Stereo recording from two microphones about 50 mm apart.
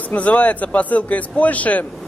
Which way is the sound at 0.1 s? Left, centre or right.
Left.